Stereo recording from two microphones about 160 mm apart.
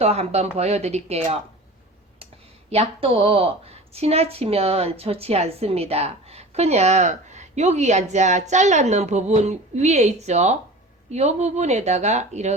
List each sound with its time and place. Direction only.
0.0 s speech: 40° right (ahead or behind)
2.6 s speech: 40° right (ahead or behind)